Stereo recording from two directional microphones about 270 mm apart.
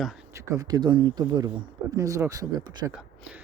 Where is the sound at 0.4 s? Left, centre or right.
Centre.